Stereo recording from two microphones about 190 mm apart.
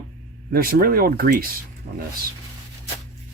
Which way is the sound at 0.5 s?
50° right (ahead or behind).